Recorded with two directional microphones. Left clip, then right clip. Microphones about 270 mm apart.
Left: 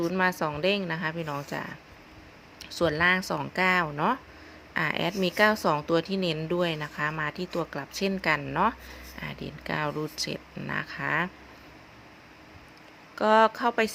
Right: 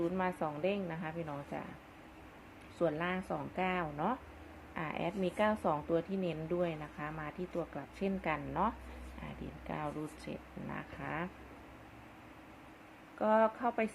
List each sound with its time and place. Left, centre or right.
0.0 s speech: left
2.7 s speech: left
13.1 s speech: left